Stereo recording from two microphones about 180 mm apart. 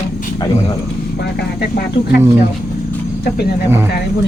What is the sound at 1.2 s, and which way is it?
Speech, 65° left (ahead or behind).